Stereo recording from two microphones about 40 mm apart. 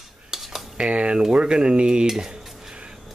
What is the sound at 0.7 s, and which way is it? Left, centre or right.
Speech, right.